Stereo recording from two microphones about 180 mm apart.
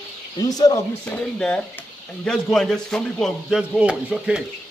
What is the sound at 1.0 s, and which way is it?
A man's voice, 5° left (ahead or behind).